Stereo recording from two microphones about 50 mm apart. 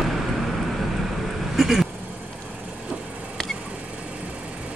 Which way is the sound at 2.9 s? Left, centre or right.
Right.